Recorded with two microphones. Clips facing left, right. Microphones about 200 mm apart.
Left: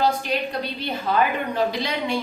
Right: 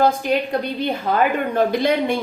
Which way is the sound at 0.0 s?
50° right (ahead or behind).